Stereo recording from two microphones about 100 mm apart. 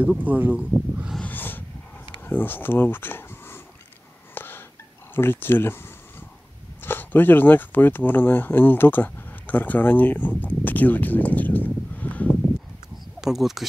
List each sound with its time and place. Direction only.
0.0 s speech: 15° right (ahead or behind)
1.2 s a sound: 20° left (ahead or behind)
2.2 s speech: 20° left (ahead or behind)
4.4 s hiccup: 20° left (ahead or behind)
5.1 s speech: 20° left (ahead or behind)
13.2 s speech: 5° right (ahead or behind)